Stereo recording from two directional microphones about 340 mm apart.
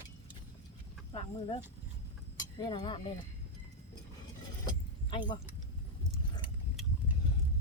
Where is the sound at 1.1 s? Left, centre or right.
Centre.